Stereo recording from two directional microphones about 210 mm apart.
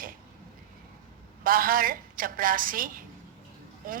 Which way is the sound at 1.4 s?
45° right (ahead or behind).